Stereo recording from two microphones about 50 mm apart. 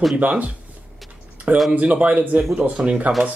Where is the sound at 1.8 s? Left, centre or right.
Right.